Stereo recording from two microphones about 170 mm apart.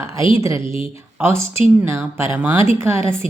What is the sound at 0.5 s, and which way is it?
Speech, 30° left (ahead or behind).